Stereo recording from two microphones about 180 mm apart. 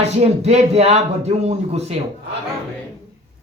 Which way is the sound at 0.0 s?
35° right (ahead or behind).